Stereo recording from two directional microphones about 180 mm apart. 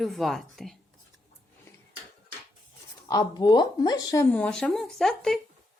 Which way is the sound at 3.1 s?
20° left (ahead or behind).